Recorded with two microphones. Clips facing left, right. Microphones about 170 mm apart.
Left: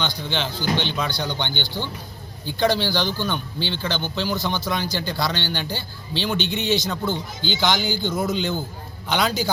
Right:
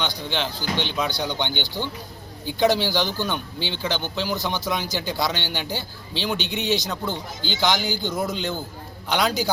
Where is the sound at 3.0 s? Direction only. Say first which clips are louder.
Even; 45° right (ahead or behind).